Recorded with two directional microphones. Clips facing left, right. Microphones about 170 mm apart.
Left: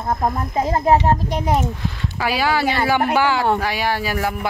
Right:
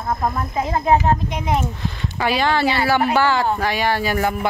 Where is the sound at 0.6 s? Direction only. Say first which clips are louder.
Left 2 dB; 35° left (ahead or behind).